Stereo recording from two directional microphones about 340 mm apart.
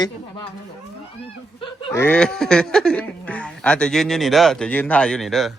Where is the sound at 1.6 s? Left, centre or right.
Centre.